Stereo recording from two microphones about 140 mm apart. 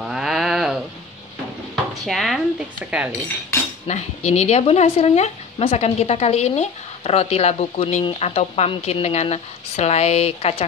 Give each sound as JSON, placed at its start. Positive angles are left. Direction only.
{"t": 0.1, "sound": "sheep", "side_deg": -5}
{"t": 2.0, "sound": "speech", "side_deg": 0}
{"t": 3.8, "sound": "speech", "side_deg": 50}